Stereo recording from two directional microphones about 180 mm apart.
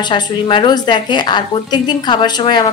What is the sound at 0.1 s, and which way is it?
A woman's voice, 30° left (ahead or behind).